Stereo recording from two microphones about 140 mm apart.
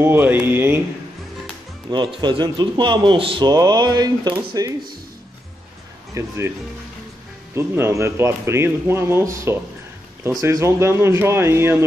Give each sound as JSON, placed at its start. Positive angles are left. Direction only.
{"t": 0.0, "sound": "speech", "side_deg": -15}
{"t": 1.9, "sound": "a man's voice", "side_deg": -30}
{"t": 6.1, "sound": "speech", "side_deg": -20}
{"t": 7.5, "sound": "speech", "side_deg": -20}